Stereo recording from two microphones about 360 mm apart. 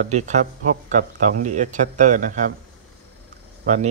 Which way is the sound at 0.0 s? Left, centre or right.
Centre.